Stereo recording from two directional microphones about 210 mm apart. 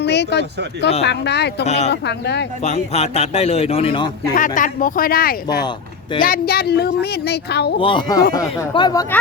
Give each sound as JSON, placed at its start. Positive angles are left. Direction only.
{"t": 0.0, "sound": "speech", "side_deg": 55}
{"t": 1.6, "sound": "speech", "side_deg": 30}
{"t": 1.9, "sound": "speech", "side_deg": 55}
{"t": 2.6, "sound": "a man's voice", "side_deg": 30}
{"t": 4.4, "sound": "speech", "side_deg": 40}
{"t": 7.8, "sound": "speech", "side_deg": 25}